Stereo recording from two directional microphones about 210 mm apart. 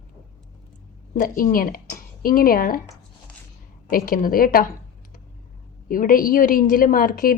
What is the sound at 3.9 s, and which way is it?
Speech, 40° left (ahead or behind).